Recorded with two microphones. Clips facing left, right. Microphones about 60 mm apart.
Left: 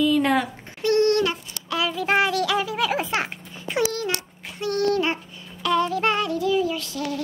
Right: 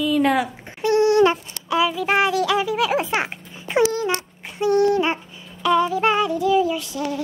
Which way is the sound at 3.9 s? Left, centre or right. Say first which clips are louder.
Right 4 dB; right.